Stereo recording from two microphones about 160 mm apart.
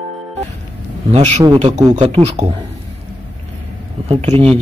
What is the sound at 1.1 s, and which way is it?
Speech, 45° right (ahead or behind).